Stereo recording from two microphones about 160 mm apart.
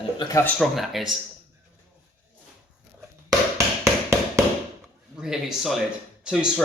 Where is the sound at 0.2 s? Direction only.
20° left (ahead or behind).